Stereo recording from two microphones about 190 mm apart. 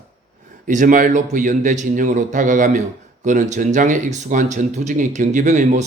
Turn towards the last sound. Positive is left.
turn(degrees=-40)  # may be behind; listen again after turning